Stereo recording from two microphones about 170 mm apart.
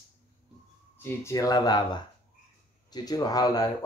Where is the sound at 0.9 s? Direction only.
15° left (ahead or behind).